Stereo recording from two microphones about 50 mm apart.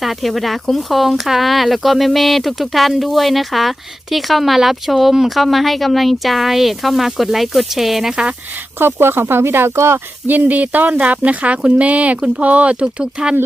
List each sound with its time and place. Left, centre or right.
0.0 s speech: centre
8.8 s speech: right
10.2 s speech: right; by 13.3 s centre